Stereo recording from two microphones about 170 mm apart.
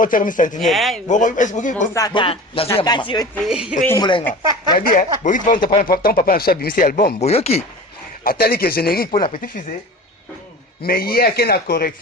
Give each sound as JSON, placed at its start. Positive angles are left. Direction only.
{"t": 0.0, "sound": "speech", "side_deg": 50}
{"t": 0.6, "sound": "speech", "side_deg": 0}
{"t": 1.0, "sound": "speech", "side_deg": 45}
{"t": 1.9, "sound": "a man's voice", "side_deg": 20}
{"t": 3.4, "sound": "speech", "side_deg": -5}
{"t": 3.8, "sound": "a man's voice", "side_deg": 25}
{"t": 4.8, "sound": "speech", "side_deg": 55}
{"t": 5.5, "sound": "a man's voice", "side_deg": 25}
{"t": 5.8, "sound": "speech", "side_deg": 60}
{"t": 7.2, "sound": "speech", "side_deg": 40}
{"t": 8.2, "sound": "speech", "side_deg": 60}
{"t": 10.8, "sound": "speech", "side_deg": 60}